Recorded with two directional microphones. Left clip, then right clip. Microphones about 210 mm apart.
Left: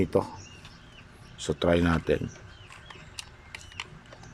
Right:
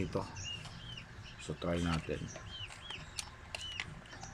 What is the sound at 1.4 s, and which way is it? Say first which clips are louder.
Speech: left 13 dB; 50° left (ahead or behind).